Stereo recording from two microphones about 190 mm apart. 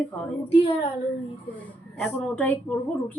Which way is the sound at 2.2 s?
10° left (ahead or behind).